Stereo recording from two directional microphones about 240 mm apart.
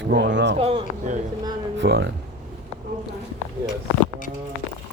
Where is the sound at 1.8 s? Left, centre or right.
Right.